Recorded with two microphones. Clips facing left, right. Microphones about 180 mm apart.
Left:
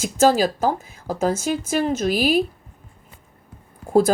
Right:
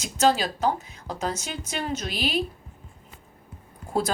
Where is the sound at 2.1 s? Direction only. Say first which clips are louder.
Left 10 dB; 5° left (ahead or behind).